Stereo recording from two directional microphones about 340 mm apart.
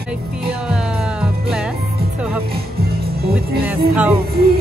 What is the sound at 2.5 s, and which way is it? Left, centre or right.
Music, right.